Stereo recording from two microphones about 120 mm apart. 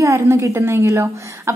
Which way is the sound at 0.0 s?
25° right (ahead or behind).